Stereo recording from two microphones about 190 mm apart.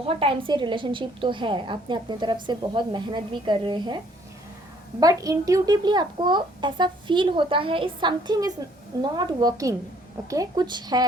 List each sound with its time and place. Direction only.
0.0 s a woman's voice: 30° right (ahead or behind)